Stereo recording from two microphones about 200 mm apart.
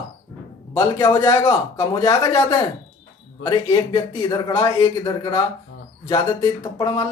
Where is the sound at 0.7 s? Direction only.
15° left (ahead or behind).